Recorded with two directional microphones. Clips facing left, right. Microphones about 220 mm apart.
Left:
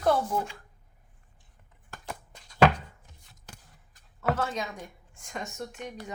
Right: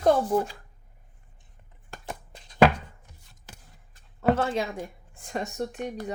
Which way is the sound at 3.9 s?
30° right (ahead or behind).